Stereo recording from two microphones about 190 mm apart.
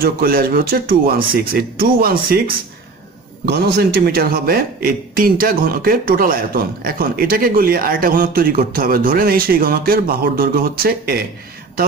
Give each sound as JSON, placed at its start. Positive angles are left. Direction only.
{"t": 0.0, "sound": "a man's voice", "side_deg": -50}
{"t": 3.7, "sound": "a man's voice", "side_deg": -55}